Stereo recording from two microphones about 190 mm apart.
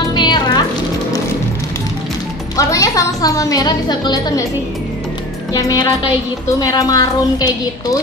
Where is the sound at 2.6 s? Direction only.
15° left (ahead or behind).